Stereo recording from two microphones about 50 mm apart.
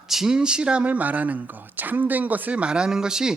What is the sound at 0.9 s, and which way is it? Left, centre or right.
Speech, right.